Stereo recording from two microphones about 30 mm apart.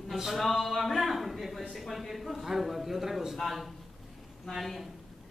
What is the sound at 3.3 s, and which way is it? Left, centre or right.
Speech, centre.